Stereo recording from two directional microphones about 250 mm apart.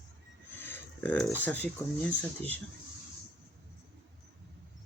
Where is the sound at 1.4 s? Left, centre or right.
Centre.